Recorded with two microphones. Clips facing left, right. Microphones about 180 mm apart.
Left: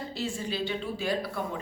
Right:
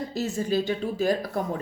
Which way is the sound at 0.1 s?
45° right (ahead or behind).